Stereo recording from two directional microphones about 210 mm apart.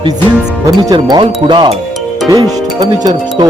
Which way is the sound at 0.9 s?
20° right (ahead or behind).